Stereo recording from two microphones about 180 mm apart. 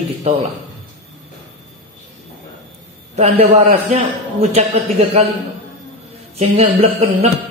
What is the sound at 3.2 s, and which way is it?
Speech, 35° right (ahead or behind).